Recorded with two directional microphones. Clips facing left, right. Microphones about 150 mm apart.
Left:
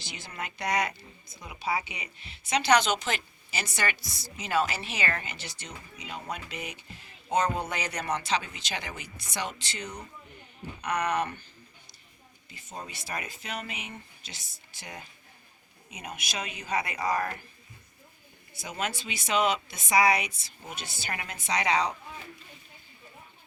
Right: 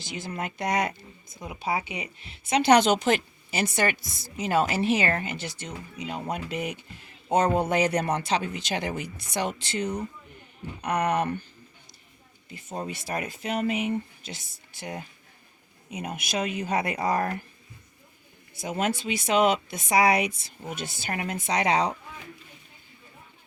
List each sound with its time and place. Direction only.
0.0 s a woman's voice: 45° right (ahead or behind)
12.5 s a woman's voice: 55° right (ahead or behind)
17.0 s speech: 30° right (ahead or behind)
18.5 s a woman's voice: 50° right (ahead or behind)